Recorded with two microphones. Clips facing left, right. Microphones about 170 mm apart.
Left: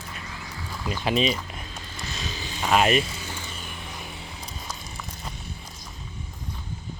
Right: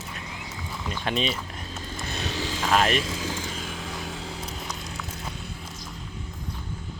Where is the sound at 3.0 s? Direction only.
90° right.